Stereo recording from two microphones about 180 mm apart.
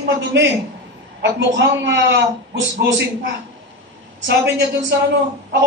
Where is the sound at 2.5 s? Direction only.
90° right.